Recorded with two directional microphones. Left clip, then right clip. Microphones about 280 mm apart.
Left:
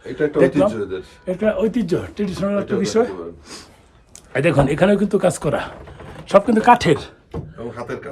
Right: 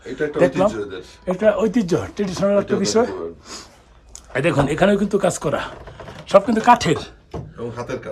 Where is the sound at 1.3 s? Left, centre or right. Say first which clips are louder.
Right 2 dB; centre.